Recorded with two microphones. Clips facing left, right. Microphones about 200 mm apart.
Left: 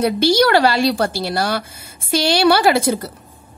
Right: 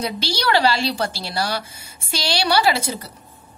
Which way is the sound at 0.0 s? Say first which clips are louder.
Left 10 dB; 55° left (ahead or behind).